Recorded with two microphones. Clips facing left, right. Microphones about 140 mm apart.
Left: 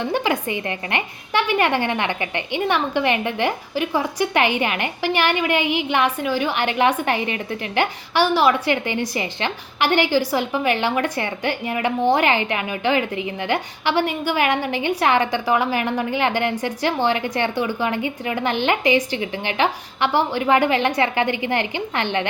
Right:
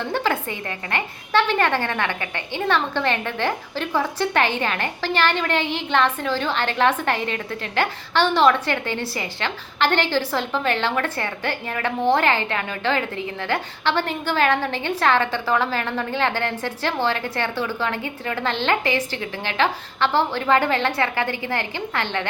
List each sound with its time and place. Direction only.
0.1 s a woman's voice: 15° left (ahead or behind)